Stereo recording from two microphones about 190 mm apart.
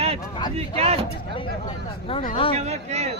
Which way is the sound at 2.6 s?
35° right (ahead or behind).